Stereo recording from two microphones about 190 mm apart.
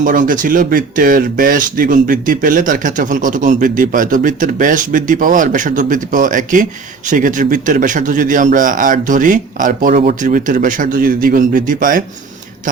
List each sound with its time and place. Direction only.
0.0 s speech: 45° right (ahead or behind)